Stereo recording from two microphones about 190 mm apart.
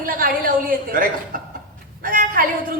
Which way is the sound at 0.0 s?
50° right (ahead or behind).